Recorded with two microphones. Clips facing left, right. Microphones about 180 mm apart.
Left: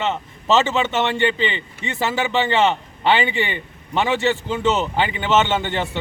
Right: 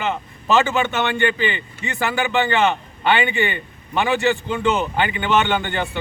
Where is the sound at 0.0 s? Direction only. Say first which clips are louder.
Left 1 dB; 25° left (ahead or behind).